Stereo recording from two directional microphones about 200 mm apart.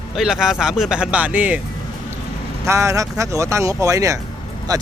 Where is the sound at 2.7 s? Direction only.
15° right (ahead or behind).